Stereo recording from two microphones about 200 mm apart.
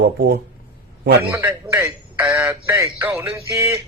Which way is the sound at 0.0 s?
55° right (ahead or behind).